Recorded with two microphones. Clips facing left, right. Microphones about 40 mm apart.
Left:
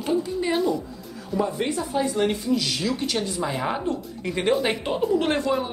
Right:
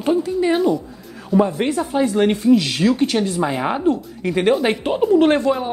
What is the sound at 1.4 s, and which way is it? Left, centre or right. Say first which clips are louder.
Speech: right 6 dB; right.